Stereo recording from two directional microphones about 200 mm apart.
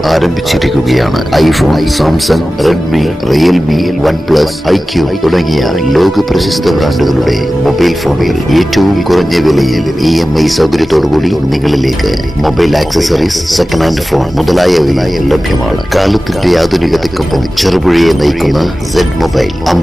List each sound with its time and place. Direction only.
0.1 s speech: centre (ahead or behind)